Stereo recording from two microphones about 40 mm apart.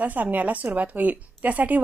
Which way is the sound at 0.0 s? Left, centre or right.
Right.